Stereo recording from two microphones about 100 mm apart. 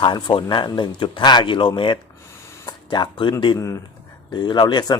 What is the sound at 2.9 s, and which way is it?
Speech, 50° left (ahead or behind).